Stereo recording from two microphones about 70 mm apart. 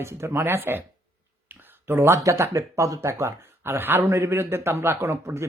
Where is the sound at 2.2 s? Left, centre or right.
Right.